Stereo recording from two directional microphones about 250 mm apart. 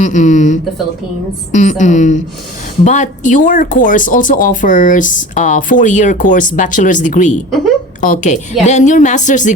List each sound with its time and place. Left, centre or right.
0.0 s speech: left